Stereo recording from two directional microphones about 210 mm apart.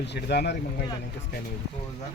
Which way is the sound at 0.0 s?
55° left (ahead or behind).